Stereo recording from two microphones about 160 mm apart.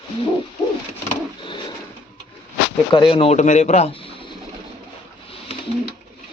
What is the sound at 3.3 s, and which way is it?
Speech, 45° left (ahead or behind).